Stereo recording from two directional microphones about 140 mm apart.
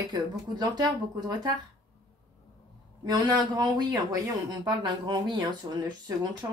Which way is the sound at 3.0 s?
30° right (ahead or behind).